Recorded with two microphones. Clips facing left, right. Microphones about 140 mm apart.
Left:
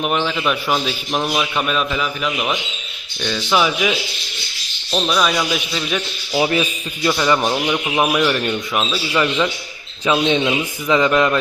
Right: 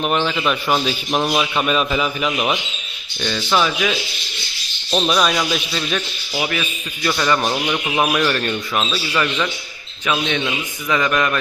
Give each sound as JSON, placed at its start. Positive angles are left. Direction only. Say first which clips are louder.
{"t": 0.0, "sound": "a man's voice", "louder": "even", "side_deg": 0}
{"t": 3.2, "sound": "a man's voice", "louder": "left 1 dB", "side_deg": 0}
{"t": 4.9, "sound": "a man's voice", "louder": "right 1 dB", "side_deg": -5}
{"t": 6.3, "sound": "a man's voice", "louder": "left 6 dB", "side_deg": 25}
{"t": 7.1, "sound": "a man's voice", "louder": "left 2 dB", "side_deg": 10}